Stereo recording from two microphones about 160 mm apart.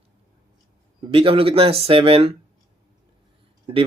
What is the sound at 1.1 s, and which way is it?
Speech, 35° right (ahead or behind).